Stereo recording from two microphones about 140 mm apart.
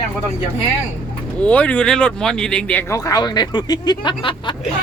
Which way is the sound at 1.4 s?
10° left (ahead or behind).